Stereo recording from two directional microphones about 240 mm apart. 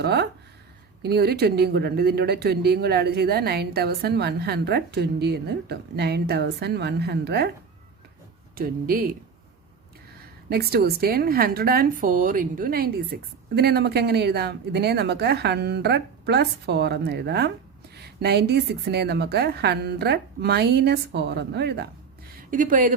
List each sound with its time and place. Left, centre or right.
0.0 s a woman's voice: right
8.5 s speech: right
10.5 s a woman's voice: right
22.4 s speech: right